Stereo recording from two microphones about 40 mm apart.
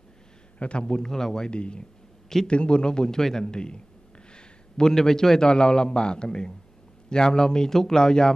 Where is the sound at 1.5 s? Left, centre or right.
Left.